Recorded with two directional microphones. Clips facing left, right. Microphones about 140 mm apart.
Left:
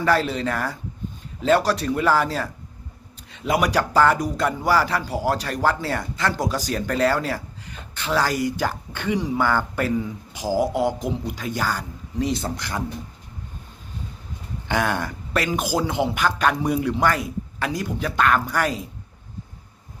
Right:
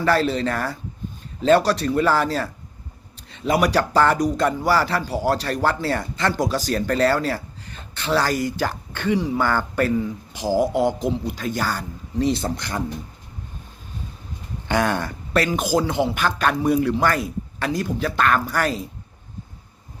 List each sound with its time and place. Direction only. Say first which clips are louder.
0.0 s speech: right 1 dB; 15° left (ahead or behind)
14.7 s speech: right 2 dB; 10° left (ahead or behind)